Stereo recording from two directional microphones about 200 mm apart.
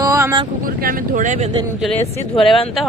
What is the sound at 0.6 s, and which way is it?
Speech, 45° right (ahead or behind).